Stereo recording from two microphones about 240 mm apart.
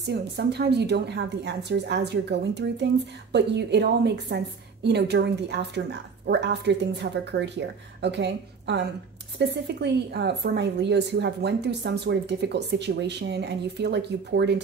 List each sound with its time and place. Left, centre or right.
0.0 s a woman's voice: right